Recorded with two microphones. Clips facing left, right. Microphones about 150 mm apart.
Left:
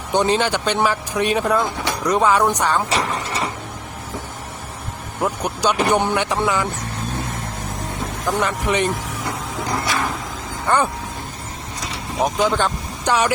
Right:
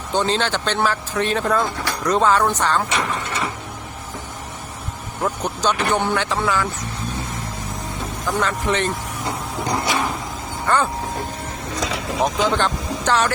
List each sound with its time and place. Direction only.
0.1 s speech: 15° left (ahead or behind)
2.9 s mechanisms: 35° left (ahead or behind)
5.2 s vehicle: 10° left (ahead or behind)
5.8 s speech: 15° left (ahead or behind)
8.4 s speech: 15° left (ahead or behind)
9.6 s a sound: 20° right (ahead or behind)
10.7 s speech: 15° left (ahead or behind)
12.2 s speech: 10° left (ahead or behind)